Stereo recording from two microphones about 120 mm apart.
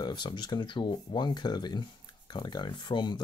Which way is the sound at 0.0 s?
40° left (ahead or behind).